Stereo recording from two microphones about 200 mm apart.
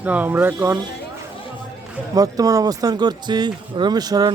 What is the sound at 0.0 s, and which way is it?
Speech, 10° right (ahead or behind).